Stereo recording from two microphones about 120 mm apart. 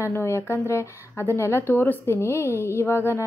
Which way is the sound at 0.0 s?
20° left (ahead or behind).